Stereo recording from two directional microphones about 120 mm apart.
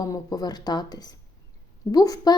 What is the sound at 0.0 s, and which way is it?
A woman's voice, 30° left (ahead or behind).